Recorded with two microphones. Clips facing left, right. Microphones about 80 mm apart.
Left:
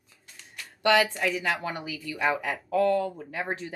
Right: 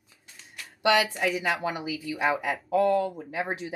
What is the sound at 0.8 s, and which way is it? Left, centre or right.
Speech, centre.